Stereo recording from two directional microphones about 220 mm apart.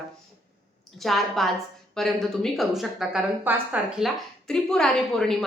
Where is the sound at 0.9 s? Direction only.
Centre (ahead or behind).